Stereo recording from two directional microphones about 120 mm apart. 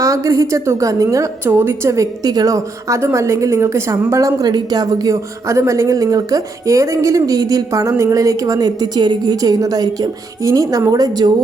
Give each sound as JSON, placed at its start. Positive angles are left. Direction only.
{"t": 0.0, "sound": "a woman's voice", "side_deg": -25}